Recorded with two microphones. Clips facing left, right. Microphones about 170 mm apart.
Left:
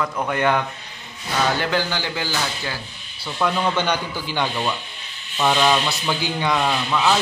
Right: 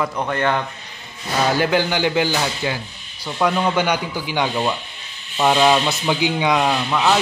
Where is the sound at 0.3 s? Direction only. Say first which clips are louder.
Left 1 dB; 10° left (ahead or behind).